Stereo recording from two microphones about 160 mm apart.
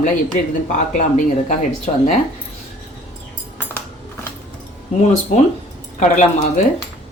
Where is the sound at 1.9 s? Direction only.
40° left (ahead or behind).